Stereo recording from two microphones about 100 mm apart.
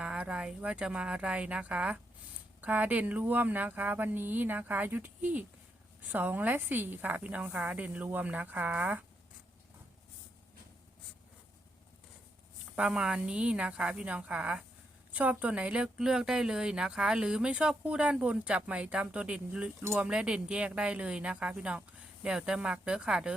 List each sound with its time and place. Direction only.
0.0 s speech: 10° right (ahead or behind)
12.7 s speech: 10° right (ahead or behind)